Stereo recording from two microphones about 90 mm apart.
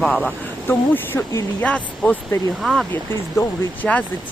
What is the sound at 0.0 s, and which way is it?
Speech, 15° left (ahead or behind).